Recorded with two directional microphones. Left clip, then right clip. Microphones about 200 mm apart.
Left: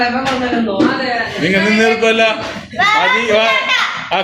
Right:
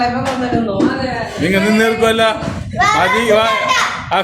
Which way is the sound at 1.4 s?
15° right (ahead or behind).